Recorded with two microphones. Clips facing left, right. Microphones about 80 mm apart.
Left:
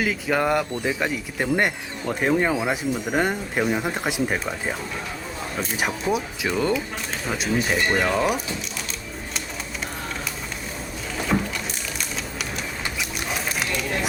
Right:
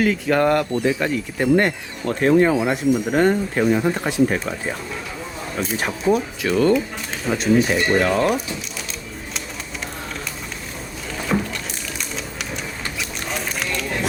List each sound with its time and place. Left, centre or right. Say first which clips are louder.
0.0 s speech: right 5 dB; centre
3.1 s speech: right 6 dB; centre
11.3 s a sound: right 2 dB; centre
12.8 s boat: even; centre